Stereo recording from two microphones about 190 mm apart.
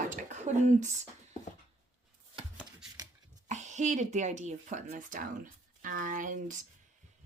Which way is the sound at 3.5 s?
40° right (ahead or behind).